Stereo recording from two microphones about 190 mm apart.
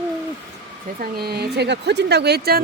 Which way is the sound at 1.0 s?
55° right (ahead or behind).